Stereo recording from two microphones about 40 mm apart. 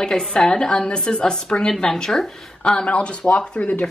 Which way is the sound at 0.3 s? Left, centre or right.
Centre.